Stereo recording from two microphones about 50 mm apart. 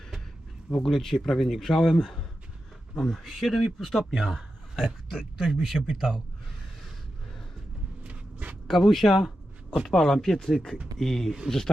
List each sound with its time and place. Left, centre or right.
0.7 s speech: centre
8.0 s walk: right
8.6 s speech: centre